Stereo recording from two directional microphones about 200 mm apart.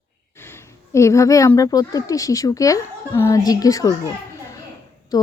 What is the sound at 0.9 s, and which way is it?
A woman's voice, 15° left (ahead or behind).